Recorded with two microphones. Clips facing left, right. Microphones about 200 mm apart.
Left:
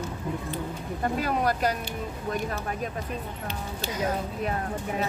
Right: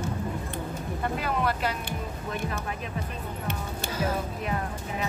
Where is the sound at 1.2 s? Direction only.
40° left (ahead or behind).